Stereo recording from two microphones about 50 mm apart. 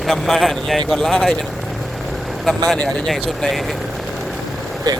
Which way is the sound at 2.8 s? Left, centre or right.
Left.